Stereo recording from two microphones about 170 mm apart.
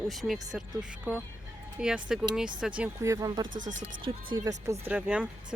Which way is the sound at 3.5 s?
50° right (ahead or behind).